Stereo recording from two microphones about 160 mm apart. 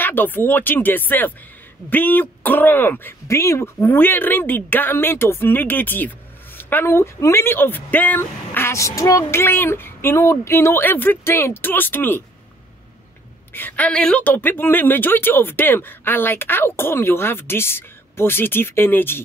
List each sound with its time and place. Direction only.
0.0 s a woman's voice: 10° left (ahead or behind)
13.5 s a woman's voice: 10° left (ahead or behind)